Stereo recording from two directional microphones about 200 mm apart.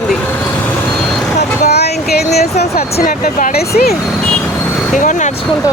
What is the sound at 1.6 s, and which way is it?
Vehicle, 55° left (ahead or behind).